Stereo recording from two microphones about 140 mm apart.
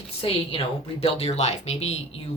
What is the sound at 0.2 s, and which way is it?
A woman's voice, 45° left (ahead or behind).